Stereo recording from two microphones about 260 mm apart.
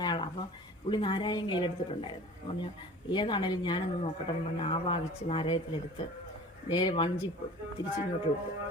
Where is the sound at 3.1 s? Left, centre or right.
Centre.